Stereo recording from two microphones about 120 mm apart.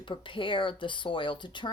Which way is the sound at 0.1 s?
45° left (ahead or behind).